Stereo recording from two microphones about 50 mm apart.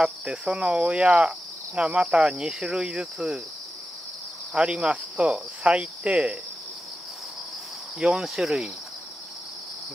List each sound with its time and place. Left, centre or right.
0.0 s cricket: centre
4.6 s cricket: right
8.0 s cricket: centre
8.4 s cricket: centre